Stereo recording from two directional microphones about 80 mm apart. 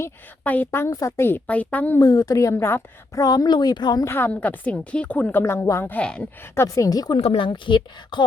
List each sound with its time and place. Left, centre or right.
0.4 s a woman's voice: left
1.5 s a woman's voice: centre
2.0 s a woman's voice: left
3.2 s speech: left
4.0 s a woman's voice: left
5.9 s speech: centre
6.6 s speech: left
7.3 s a woman's voice: left